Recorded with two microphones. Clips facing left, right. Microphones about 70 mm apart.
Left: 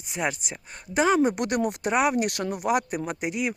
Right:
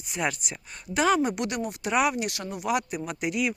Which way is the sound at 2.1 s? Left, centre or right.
Left.